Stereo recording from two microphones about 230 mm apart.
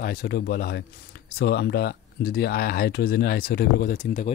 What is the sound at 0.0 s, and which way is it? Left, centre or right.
Speech, left.